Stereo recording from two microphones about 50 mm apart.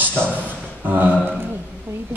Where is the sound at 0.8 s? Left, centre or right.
Right.